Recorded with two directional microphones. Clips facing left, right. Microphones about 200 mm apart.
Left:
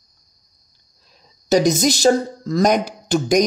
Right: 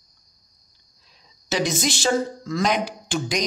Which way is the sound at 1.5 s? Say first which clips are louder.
Left 8 dB; 40° left (ahead or behind).